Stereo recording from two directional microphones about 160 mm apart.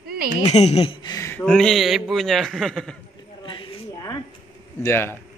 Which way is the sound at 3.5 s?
25° left (ahead or behind).